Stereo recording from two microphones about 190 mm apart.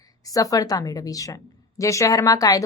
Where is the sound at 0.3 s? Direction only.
20° left (ahead or behind).